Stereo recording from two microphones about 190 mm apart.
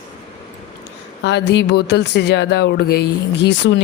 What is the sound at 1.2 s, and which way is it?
Speech, 65° left (ahead or behind).